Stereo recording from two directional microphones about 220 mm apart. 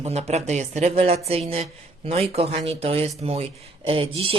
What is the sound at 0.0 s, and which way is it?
Speech, 30° right (ahead or behind).